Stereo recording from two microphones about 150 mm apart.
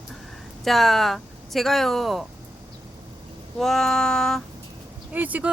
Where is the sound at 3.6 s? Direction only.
Centre (ahead or behind).